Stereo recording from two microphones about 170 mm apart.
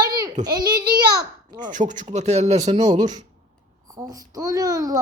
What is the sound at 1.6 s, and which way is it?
Speech, 50° right (ahead or behind).